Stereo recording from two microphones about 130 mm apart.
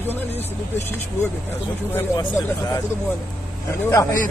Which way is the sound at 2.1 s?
25° left (ahead or behind).